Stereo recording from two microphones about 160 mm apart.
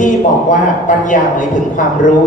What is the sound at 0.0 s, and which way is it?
A man's voice, 55° left (ahead or behind).